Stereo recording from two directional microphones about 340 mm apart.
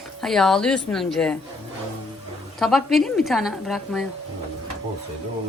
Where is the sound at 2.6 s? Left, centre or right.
Centre.